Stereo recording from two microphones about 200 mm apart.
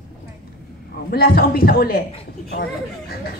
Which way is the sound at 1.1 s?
50° left (ahead or behind).